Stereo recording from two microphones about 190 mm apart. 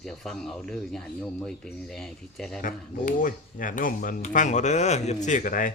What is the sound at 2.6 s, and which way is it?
Speech, 45° left (ahead or behind).